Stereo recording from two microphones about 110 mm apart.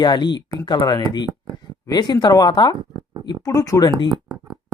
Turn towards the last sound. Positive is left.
turn(degrees=35)  # may be behind; listen again after turning